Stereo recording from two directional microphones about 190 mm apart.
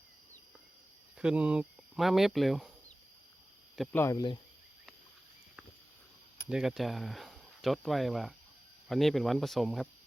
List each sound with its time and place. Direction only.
1.2 s speech: 5° right (ahead or behind)
3.9 s speech: 15° left (ahead or behind)
6.5 s speech: centre (ahead or behind)